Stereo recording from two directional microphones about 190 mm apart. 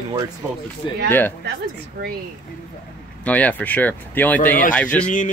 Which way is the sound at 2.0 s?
50° right (ahead or behind).